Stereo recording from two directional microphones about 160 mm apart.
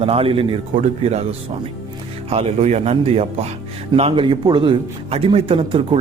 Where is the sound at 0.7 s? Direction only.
45° right (ahead or behind).